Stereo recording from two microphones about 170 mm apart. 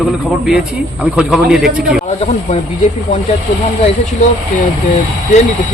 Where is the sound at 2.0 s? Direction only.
40° left (ahead or behind).